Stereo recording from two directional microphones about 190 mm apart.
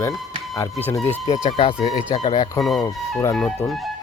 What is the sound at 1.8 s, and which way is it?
Speech, 35° left (ahead or behind).